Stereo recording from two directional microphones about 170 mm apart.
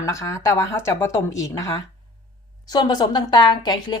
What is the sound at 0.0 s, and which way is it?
Speech, 20° left (ahead or behind).